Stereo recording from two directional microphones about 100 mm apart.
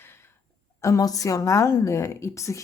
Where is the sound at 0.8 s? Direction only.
35° left (ahead or behind).